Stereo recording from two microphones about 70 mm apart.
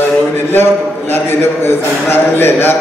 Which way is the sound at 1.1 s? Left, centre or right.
Left.